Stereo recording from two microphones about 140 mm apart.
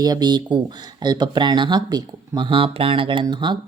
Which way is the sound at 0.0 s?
30° right (ahead or behind).